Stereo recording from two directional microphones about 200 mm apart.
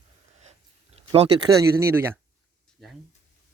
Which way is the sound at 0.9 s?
25° right (ahead or behind).